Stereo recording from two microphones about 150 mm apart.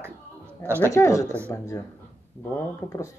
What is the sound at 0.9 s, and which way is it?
Speech, 20° left (ahead or behind).